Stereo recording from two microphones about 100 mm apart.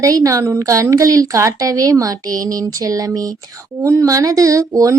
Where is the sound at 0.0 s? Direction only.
35° right (ahead or behind).